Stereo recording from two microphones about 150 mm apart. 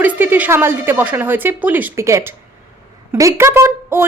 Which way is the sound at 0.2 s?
10° right (ahead or behind).